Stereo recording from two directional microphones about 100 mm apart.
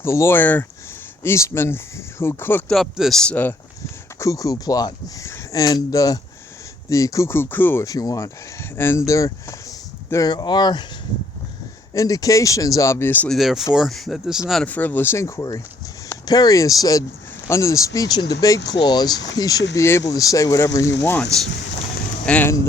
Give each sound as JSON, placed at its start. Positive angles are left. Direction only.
{"t": 0.0, "sound": "speech", "side_deg": 25}
{"t": 2.6, "sound": "speech", "side_deg": 0}
{"t": 4.2, "sound": "speech", "side_deg": 35}
{"t": 7.9, "sound": "speech", "side_deg": 35}
{"t": 8.7, "sound": "speech", "side_deg": 20}
{"t": 10.2, "sound": "speech", "side_deg": 45}
{"t": 11.9, "sound": "speech", "side_deg": 35}
{"t": 13.2, "sound": "speech", "side_deg": 0}
{"t": 14.6, "sound": "speech", "side_deg": 15}
{"t": 22.3, "sound": "speech", "side_deg": 15}